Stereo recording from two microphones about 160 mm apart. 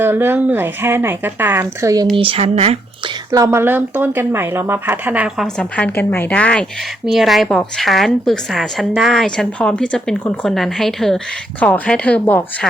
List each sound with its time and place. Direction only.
0.0 s a woman's voice: 15° right (ahead or behind)
2.1 s speech: 35° right (ahead or behind)
3.3 s a woman's voice: 20° right (ahead or behind)
5.5 s a woman's voice: 10° left (ahead or behind)